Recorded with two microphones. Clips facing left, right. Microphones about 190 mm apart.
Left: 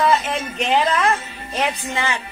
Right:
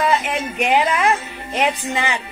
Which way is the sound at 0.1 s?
15° right (ahead or behind).